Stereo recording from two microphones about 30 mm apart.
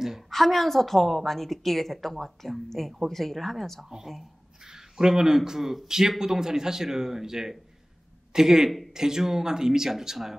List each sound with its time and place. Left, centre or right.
0.3 s a woman's voice: centre
4.6 s speech: right
5.6 s a man's voice: centre
5.9 s a man's voice: centre
8.6 s speech: centre
8.9 s a man's voice: centre